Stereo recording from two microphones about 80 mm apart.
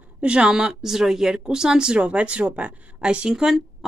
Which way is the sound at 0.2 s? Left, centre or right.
Centre.